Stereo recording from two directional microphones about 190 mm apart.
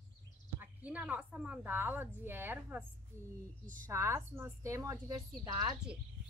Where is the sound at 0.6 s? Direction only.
10° right (ahead or behind).